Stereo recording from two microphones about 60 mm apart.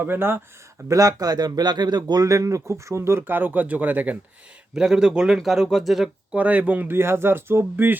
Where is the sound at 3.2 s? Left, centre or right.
Right.